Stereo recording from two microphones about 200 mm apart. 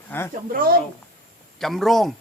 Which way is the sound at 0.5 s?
45° right (ahead or behind).